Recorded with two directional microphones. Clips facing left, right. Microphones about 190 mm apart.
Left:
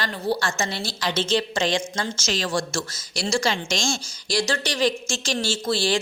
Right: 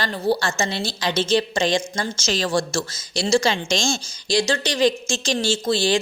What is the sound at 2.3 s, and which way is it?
A woman's voice, 35° right (ahead or behind).